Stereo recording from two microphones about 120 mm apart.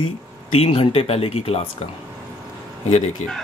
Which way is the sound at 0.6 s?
50° left (ahead or behind).